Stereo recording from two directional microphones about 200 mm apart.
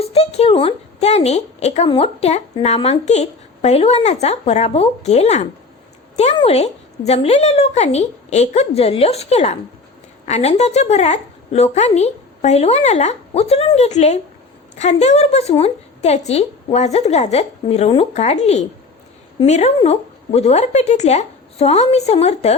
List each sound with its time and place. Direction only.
0.0 s a woman's voice: 30° left (ahead or behind)